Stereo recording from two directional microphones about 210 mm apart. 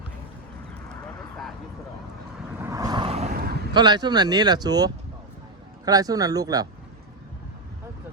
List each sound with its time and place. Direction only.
2.6 s vehicle: 15° right (ahead or behind); by 3.3 s 30° right (ahead or behind)
3.7 s speech: 20° right (ahead or behind)